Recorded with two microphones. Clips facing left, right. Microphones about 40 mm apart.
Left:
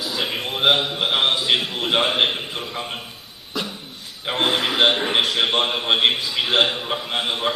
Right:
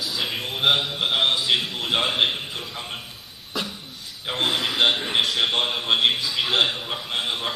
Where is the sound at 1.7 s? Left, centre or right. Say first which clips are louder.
Left 3 dB; left.